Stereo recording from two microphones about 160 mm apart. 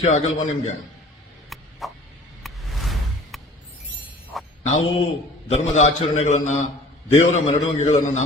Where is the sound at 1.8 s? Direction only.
Centre (ahead or behind).